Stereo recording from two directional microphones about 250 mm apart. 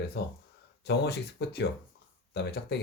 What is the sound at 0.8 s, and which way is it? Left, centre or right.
Speech, left.